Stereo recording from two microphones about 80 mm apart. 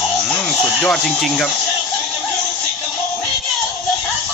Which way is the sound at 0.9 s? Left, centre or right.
Centre.